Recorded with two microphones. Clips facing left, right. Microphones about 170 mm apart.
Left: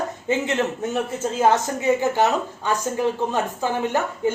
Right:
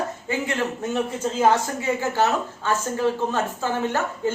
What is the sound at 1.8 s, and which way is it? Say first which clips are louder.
A woman's voice: left 3 dB; 20° left (ahead or behind).